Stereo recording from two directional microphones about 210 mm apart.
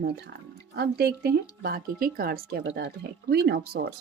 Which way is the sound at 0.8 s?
50° right (ahead or behind).